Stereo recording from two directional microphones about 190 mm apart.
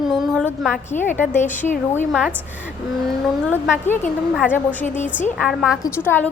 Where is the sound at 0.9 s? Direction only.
40° left (ahead or behind).